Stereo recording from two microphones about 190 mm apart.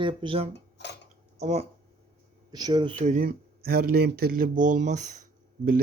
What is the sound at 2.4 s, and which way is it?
Speech, 20° right (ahead or behind).